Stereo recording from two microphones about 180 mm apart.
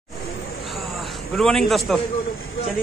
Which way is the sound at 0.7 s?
Centre (ahead or behind).